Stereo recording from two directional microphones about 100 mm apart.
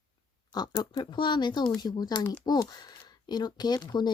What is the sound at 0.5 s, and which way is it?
Speech, 45° left (ahead or behind).